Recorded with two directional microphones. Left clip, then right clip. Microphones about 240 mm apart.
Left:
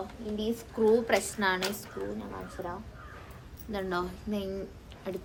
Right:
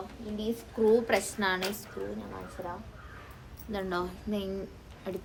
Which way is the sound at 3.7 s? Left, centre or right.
Centre.